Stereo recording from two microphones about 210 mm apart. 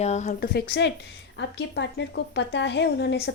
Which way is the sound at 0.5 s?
50° left (ahead or behind).